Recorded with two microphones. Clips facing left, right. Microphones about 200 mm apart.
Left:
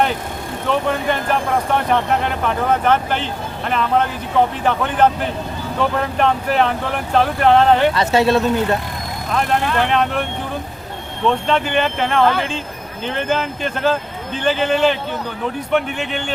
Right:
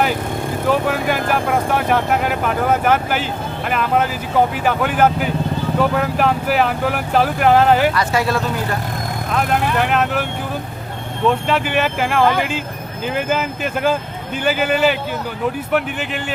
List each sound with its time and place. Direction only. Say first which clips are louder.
0.7 s speech: even; 5° right (ahead or behind)
7.9 s speech: left 4 dB; 25° left (ahead or behind)
9.3 s speech: even; 5° right (ahead or behind)
11.3 s speech: even; 5° right (ahead or behind)